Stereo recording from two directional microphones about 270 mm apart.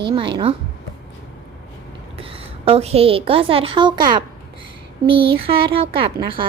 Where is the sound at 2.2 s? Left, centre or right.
Right.